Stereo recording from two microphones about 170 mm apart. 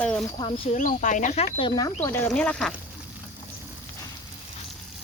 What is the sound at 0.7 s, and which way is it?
Speech, 50° left (ahead or behind).